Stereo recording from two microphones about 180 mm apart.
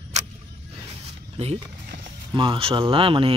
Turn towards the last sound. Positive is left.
turn(degrees=-30)  # may be behind; listen again after turning